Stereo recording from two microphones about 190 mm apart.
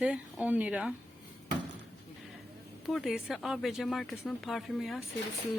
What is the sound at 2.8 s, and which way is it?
Speech, centre (ahead or behind).